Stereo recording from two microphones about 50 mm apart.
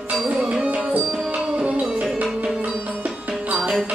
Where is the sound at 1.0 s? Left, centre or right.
Centre.